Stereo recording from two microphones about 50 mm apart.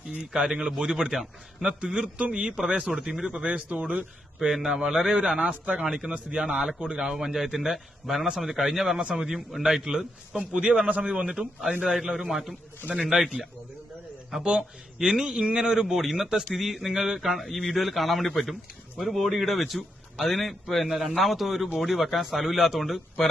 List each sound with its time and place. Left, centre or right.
0.1 s a man's voice: centre
2.1 s a man's voice: right
4.4 s a man's voice: centre
6.1 s speech: right
6.4 s a man's voice: centre
7.0 s a man's voice: centre
10.5 s a man's voice: right; by 13.3 s centre
14.3 s a man's voice: centre